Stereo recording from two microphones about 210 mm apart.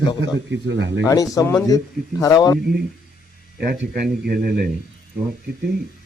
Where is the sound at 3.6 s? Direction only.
50° right (ahead or behind).